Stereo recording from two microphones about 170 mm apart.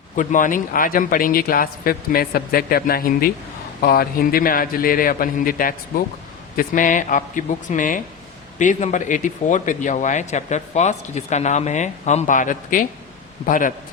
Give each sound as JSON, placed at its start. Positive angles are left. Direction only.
{"t": 0.2, "sound": "a man's voice", "side_deg": 50}